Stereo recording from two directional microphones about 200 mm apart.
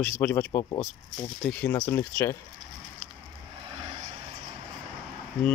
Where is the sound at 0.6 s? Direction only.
25° left (ahead or behind).